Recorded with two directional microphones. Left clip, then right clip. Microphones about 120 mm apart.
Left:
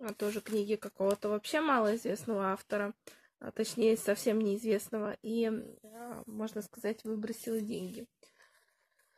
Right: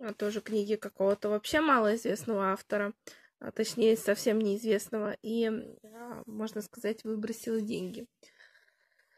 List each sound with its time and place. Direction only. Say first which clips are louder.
0.0 s speech: right 2 dB; 30° right (ahead or behind)